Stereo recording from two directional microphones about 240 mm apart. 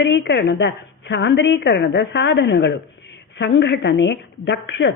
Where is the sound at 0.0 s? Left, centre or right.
Left.